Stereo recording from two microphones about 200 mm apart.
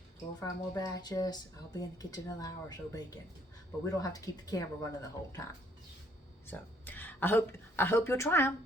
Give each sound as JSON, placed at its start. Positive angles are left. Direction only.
{"t": 0.4, "sound": "speech", "side_deg": 20}
{"t": 6.5, "sound": "speech", "side_deg": 10}